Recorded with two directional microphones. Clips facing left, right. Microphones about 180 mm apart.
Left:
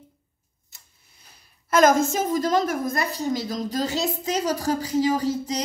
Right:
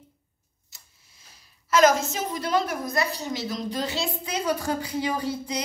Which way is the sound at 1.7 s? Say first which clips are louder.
Left 2 dB; 50° left (ahead or behind).